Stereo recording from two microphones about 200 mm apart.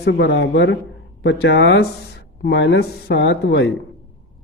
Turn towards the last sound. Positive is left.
turn(degrees=55)  # may be behind; listen again after turning